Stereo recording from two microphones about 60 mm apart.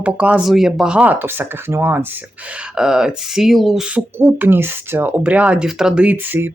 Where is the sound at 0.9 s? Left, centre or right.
Right.